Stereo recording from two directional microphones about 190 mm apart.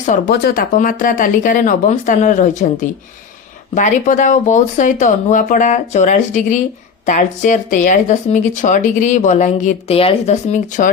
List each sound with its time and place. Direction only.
0.3 s speech: 55° left (ahead or behind)
3.8 s speech: 40° left (ahead or behind)